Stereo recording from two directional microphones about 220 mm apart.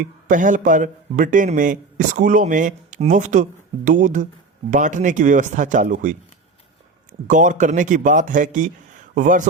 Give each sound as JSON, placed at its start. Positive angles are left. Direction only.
{"t": 0.0, "sound": "speech", "side_deg": -35}